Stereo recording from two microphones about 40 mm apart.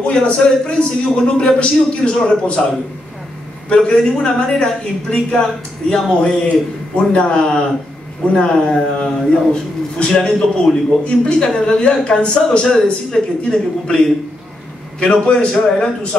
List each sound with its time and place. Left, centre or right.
0.0 s a man's voice: left
3.6 s a man's voice: left